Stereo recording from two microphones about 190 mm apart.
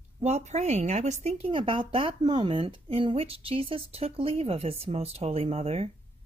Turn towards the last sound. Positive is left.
turn(degrees=-30)  # may be behind; listen again after turning